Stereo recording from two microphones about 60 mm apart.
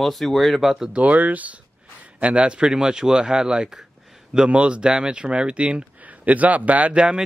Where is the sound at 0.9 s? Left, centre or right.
Right.